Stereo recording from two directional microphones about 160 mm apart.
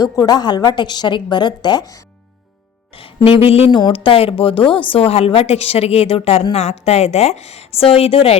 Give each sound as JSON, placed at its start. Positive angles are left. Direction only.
{"t": 0.0, "sound": "a woman's voice", "side_deg": 25}
{"t": 2.9, "sound": "speech", "side_deg": 35}